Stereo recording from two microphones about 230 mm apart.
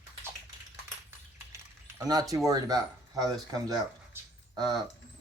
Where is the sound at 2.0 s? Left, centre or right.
Centre.